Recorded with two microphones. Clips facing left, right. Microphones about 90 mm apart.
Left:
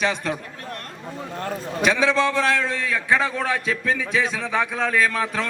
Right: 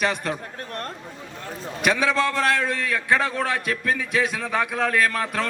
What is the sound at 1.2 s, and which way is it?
Speech, 55° left (ahead or behind).